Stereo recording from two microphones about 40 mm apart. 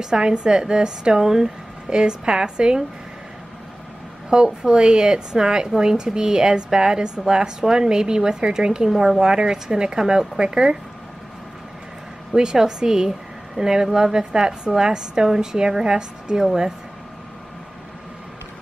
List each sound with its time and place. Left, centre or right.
0.0 s a woman's voice: centre
4.5 s a woman's voice: centre
12.4 s a woman's voice: centre